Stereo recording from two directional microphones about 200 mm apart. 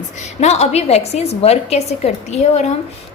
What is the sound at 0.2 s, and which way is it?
A woman's voice, 35° left (ahead or behind).